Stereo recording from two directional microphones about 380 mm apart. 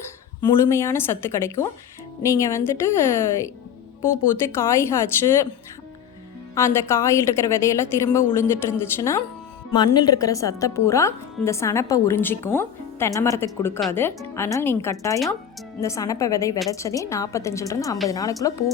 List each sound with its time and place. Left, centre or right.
0.4 s a woman's voice: centre
4.5 s a woman's voice: centre
6.5 s a woman's voice: centre